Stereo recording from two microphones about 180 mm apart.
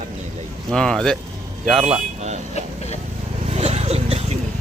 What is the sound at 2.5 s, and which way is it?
Vehicle, 35° left (ahead or behind).